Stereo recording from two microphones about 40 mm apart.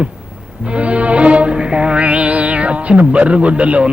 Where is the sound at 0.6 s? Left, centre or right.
Right.